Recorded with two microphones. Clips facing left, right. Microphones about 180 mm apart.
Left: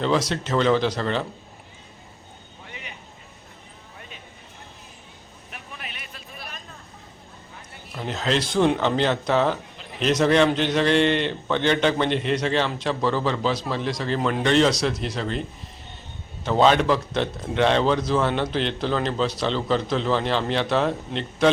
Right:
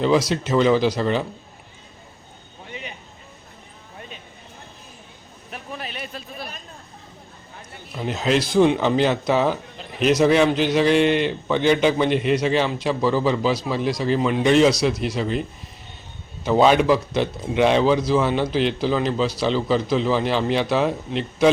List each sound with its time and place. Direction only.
0.0 s speech: 10° right (ahead or behind)
5.5 s a sound: 35° right (ahead or behind)
7.9 s speech: 10° right (ahead or behind)